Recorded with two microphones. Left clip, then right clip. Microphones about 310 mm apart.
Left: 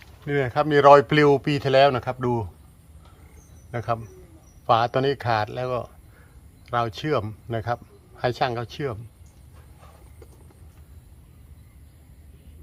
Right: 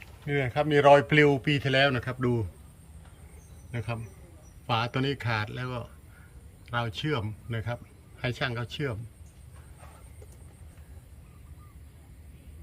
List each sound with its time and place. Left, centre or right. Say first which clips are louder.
0.0 s speech: left 5 dB; centre
3.7 s a man's voice: left 10 dB; centre